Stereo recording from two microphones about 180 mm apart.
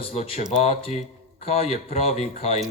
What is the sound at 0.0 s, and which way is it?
Speech, 35° left (ahead or behind).